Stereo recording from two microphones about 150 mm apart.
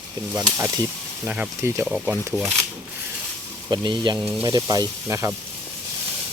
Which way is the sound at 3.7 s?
30° right (ahead or behind).